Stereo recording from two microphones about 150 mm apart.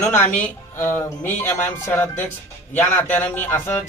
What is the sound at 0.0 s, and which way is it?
Speech, 15° left (ahead or behind).